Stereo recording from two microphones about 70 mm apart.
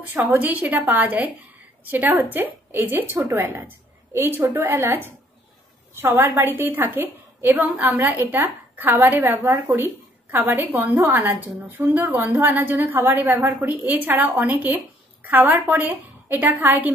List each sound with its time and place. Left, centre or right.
0.1 s a woman's voice: right